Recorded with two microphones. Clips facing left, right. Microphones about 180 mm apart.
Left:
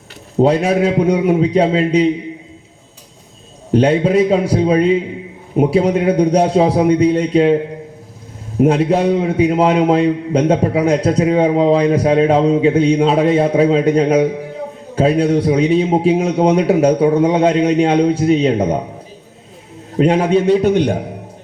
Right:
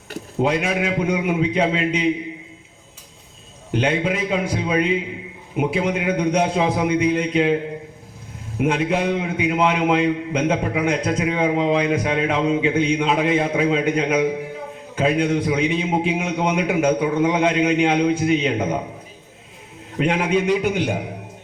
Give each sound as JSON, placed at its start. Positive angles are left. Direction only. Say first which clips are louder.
{"t": 0.3, "sound": "a man's voice", "louder": "left 8 dB", "side_deg": 35}
{"t": 3.7, "sound": "a man's voice", "louder": "left 8 dB", "side_deg": 35}
{"t": 20.0, "sound": "a man's voice", "louder": "left 7 dB", "side_deg": 35}